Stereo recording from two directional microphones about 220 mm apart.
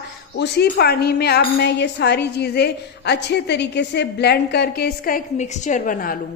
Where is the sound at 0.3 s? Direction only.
50° left (ahead or behind).